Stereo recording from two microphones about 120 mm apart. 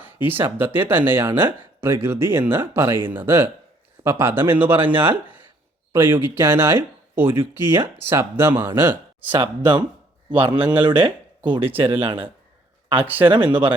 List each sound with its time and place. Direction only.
0.0 s speech: 15° right (ahead or behind)
9.3 s speech: 45° right (ahead or behind)
10.5 s speech: 10° right (ahead or behind)
10.8 s speech: 45° right (ahead or behind)
13.0 s speech: 15° right (ahead or behind)
13.2 s speech: 45° right (ahead or behind)